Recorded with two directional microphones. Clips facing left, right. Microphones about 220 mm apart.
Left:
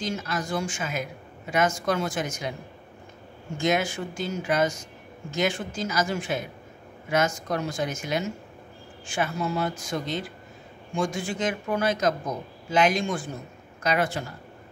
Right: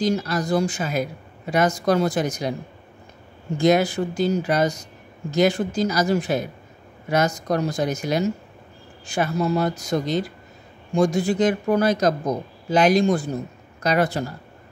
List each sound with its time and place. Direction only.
0.0 s speech: 35° right (ahead or behind)
3.5 s speech: 35° right (ahead or behind)